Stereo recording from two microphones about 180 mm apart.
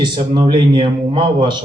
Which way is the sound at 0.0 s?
25° right (ahead or behind).